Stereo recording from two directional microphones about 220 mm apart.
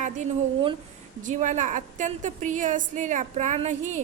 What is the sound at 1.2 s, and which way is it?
A woman's voice, 35° right (ahead or behind).